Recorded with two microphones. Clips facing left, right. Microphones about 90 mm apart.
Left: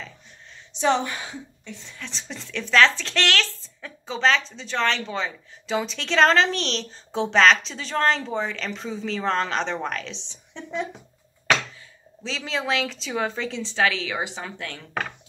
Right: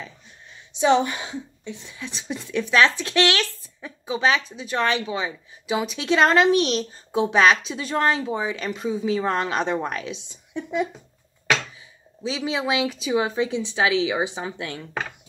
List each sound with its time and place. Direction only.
0.7 s a woman's voice: 15° right (ahead or behind)
12.2 s a woman's voice: 15° right (ahead or behind)